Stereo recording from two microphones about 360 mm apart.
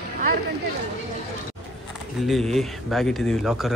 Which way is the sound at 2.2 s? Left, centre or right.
Centre.